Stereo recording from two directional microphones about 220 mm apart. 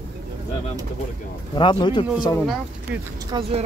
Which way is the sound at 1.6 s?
20° left (ahead or behind).